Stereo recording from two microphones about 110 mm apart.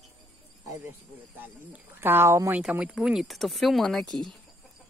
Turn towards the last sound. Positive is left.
turn(degrees=0)  # may be behind; listen again after turning